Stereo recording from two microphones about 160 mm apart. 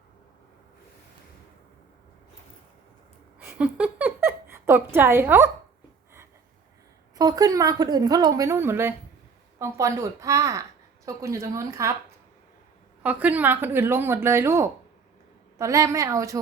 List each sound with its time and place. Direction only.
3.4 s a sound: 10° right (ahead or behind)
7.2 s a woman's voice: 25° right (ahead or behind)
13.0 s a woman's voice: 10° right (ahead or behind)